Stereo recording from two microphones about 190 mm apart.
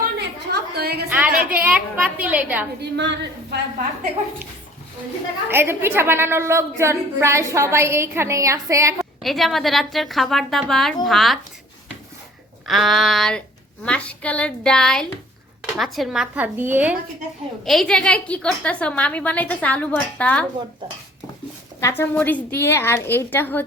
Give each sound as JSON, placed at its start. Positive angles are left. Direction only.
{"t": 0.2, "sound": "a sound", "side_deg": -60}
{"t": 1.1, "sound": "a sound", "side_deg": -5}
{"t": 1.5, "sound": "a woman's voice", "side_deg": -5}
{"t": 2.9, "sound": "a woman's voice", "side_deg": -65}
{"t": 5.5, "sound": "a woman's voice", "side_deg": -10}
{"t": 9.2, "sound": "a woman's voice", "side_deg": 0}
{"t": 12.6, "sound": "a woman's voice", "side_deg": 0}
{"t": 17.7, "sound": "a woman's voice", "side_deg": 0}
{"t": 21.8, "sound": "a woman's voice", "side_deg": 15}